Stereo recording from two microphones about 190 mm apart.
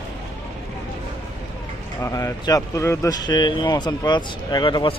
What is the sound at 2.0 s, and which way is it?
Speech, 15° left (ahead or behind).